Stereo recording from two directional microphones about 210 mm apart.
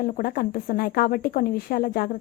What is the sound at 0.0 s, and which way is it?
A woman's voice, 45° left (ahead or behind).